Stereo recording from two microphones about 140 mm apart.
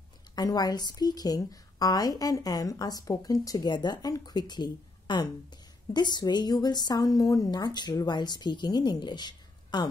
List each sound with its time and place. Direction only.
0.4 s a woman's voice: 25° left (ahead or behind)